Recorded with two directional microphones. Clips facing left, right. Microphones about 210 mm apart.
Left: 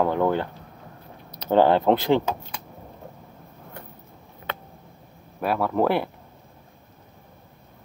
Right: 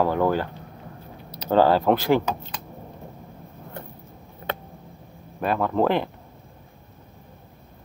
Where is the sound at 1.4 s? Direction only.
20° left (ahead or behind).